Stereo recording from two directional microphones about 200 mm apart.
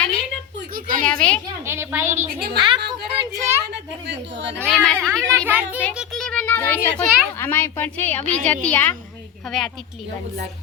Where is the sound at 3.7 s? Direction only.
60° right (ahead or behind).